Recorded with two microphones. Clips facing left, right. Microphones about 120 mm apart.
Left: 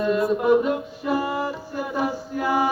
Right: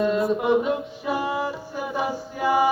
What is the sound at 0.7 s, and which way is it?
Mantra, 5° right (ahead or behind).